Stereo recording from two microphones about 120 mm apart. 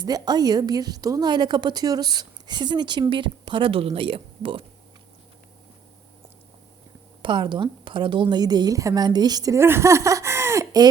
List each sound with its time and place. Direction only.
0.0 s a woman's voice: 35° right (ahead or behind)
7.2 s a woman's voice: 40° right (ahead or behind)